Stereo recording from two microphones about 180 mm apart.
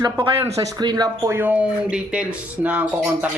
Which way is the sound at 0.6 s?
20° right (ahead or behind).